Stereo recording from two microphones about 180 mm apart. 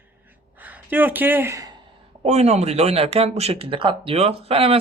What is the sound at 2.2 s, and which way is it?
Speech, 35° right (ahead or behind).